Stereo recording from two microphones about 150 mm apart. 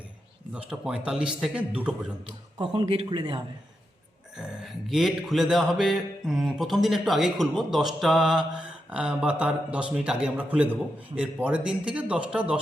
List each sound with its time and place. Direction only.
0.5 s a man's voice: 5° right (ahead or behind)
2.2 s speech: 35° right (ahead or behind)
4.4 s mantra: centre (ahead or behind)